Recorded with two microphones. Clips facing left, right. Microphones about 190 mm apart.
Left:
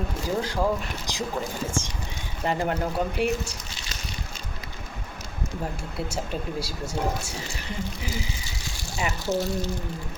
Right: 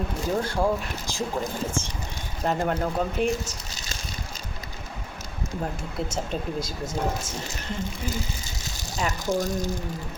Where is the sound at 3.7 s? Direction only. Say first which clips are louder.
Right 1 dB; 40° right (ahead or behind).